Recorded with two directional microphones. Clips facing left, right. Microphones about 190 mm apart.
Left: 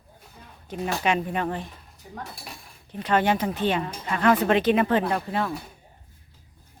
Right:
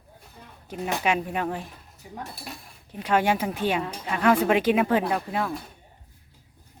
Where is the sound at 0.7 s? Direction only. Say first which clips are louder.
Left 1 dB; 10° right (ahead or behind).